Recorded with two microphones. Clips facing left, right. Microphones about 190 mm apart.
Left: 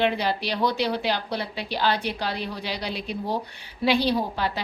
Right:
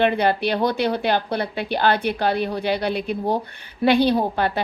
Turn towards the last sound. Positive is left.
turn(degrees=-55)  # may be behind; listen again after turning